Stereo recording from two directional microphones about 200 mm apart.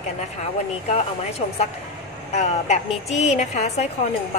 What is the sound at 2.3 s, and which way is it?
Speech, 35° left (ahead or behind).